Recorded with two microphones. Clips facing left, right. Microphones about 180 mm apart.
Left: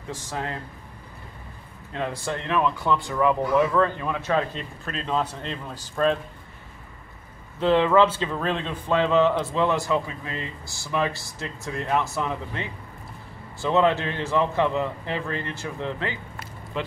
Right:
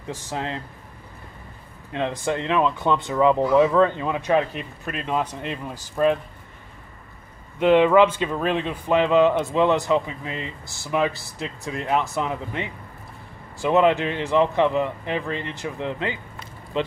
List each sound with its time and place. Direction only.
0.3 s speech: 20° right (ahead or behind)
1.9 s speech: 20° right (ahead or behind)
7.5 s speech: 15° right (ahead or behind)